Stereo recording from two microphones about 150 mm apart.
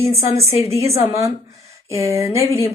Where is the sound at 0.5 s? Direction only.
45° left (ahead or behind).